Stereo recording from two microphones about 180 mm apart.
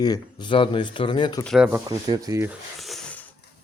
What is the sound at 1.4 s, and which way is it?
Speech, centre (ahead or behind).